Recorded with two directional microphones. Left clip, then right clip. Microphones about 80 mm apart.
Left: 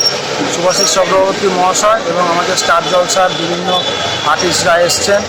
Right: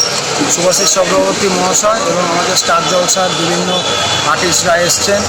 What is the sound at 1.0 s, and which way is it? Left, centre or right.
Speech, left.